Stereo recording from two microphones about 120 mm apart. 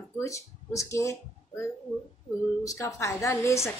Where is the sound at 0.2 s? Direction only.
25° left (ahead or behind).